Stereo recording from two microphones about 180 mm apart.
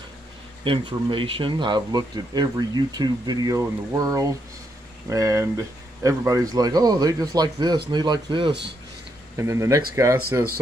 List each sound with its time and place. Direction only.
0.7 s speech: 30° right (ahead or behind)
9.4 s speech: 15° right (ahead or behind)